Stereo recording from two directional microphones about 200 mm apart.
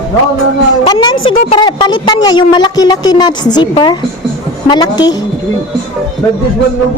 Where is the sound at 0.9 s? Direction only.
20° left (ahead or behind).